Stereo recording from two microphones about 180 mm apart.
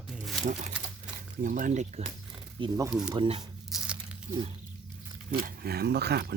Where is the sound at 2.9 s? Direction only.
5° right (ahead or behind).